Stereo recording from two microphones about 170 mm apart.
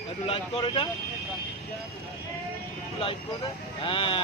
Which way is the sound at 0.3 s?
30° left (ahead or behind).